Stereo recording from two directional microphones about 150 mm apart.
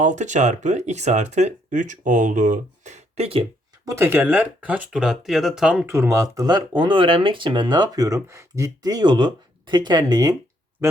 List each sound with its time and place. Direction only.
0.0 s speech: 55° right (ahead or behind)
3.8 s speech: 15° right (ahead or behind)
5.8 s speech: 20° right (ahead or behind)